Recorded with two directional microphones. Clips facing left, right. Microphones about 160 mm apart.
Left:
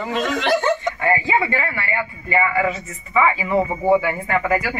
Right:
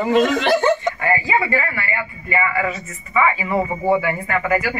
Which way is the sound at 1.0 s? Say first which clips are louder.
Even; 25° left (ahead or behind).